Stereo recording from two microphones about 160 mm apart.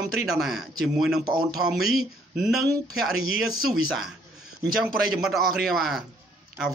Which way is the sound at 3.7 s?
Centre (ahead or behind).